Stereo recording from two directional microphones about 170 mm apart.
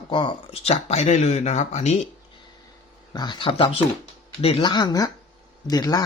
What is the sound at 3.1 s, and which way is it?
Speech, 25° left (ahead or behind).